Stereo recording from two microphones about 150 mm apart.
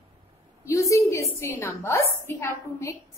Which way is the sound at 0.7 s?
20° left (ahead or behind).